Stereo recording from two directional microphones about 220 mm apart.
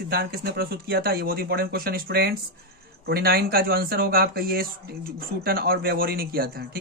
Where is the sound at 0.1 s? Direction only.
45° right (ahead or behind).